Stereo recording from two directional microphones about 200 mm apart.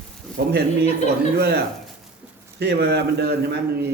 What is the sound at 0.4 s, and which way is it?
Speech, 55° right (ahead or behind).